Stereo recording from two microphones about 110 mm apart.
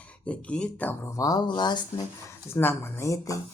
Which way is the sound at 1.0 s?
30° left (ahead or behind).